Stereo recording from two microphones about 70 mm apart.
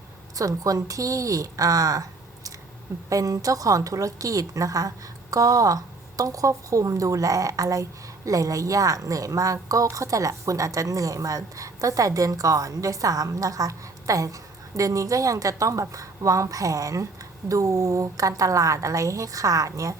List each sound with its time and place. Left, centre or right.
0.3 s a woman's voice: right